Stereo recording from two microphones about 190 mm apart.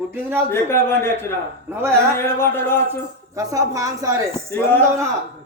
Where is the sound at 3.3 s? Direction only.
20° right (ahead or behind).